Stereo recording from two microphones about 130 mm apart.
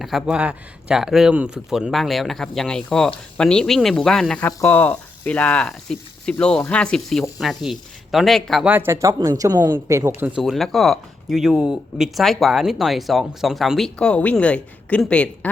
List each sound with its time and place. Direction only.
0.0 s speech: 5° right (ahead or behind)
8.6 s speech: 15° right (ahead or behind); by 9.7 s 30° right (ahead or behind)
10.2 s speech: 10° right (ahead or behind)
10.4 s speech: centre (ahead or behind)